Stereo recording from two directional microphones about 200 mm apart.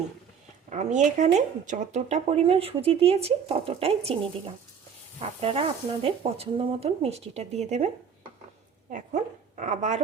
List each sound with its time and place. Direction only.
0.7 s speech: 40° right (ahead or behind)
8.9 s speech: 40° right (ahead or behind)